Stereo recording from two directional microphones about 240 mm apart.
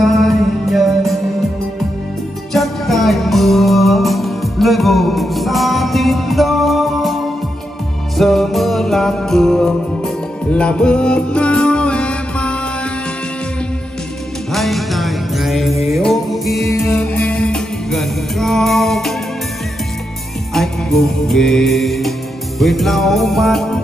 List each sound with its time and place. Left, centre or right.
0.0 s music: centre
2.5 s music: centre
8.2 s music: centre
14.5 s music: centre
20.5 s music: centre